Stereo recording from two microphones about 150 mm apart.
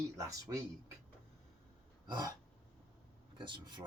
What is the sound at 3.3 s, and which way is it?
Speech, 30° right (ahead or behind).